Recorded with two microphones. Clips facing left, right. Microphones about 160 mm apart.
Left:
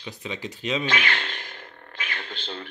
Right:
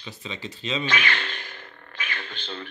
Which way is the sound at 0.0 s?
15° left (ahead or behind).